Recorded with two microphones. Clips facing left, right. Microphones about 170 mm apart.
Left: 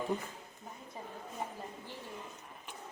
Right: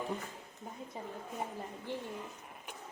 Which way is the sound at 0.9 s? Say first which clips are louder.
Right 2 dB; 20° right (ahead or behind).